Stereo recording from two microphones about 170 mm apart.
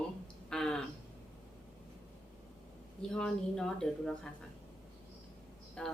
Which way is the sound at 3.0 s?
5° left (ahead or behind).